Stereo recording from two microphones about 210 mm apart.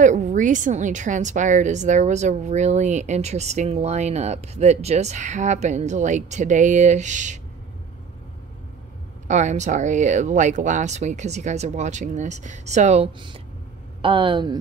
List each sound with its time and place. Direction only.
0.0 s a woman's voice: 35° right (ahead or behind)
9.3 s a woman's voice: 35° right (ahead or behind)